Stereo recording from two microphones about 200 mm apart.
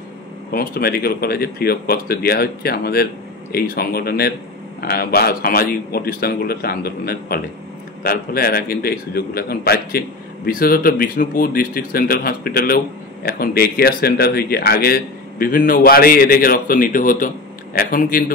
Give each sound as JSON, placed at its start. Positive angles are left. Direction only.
{"t": 0.5, "sound": "a man's voice", "side_deg": 50}